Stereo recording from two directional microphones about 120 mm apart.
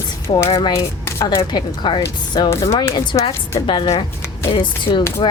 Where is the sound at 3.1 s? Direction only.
45° left (ahead or behind).